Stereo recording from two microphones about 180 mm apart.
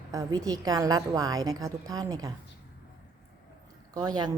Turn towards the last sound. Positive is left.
turn(degrees=-20)  # may be behind; listen again after turning